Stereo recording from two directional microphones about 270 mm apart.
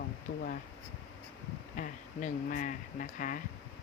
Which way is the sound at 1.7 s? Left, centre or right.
Left.